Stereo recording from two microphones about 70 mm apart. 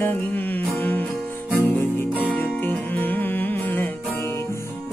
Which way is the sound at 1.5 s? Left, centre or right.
Left.